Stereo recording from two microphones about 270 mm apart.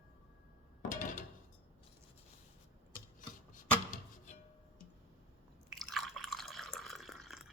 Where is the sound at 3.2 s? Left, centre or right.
Left.